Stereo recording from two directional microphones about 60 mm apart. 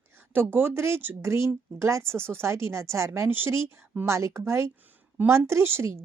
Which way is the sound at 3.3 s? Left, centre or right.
Right.